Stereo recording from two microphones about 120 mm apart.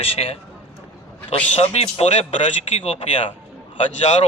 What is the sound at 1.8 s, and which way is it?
Speech, 50° left (ahead or behind).